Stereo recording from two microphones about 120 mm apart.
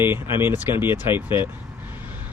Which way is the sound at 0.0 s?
20° right (ahead or behind).